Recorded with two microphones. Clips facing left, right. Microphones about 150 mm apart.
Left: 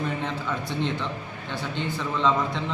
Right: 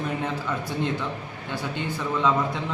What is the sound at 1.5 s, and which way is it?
A man's voice, 10° right (ahead or behind).